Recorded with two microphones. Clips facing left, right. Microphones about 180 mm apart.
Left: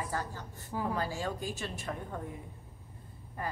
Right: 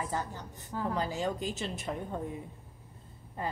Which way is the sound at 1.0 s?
20° right (ahead or behind).